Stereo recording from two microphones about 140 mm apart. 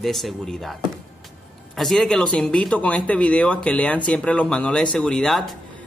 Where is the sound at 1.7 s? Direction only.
Centre (ahead or behind).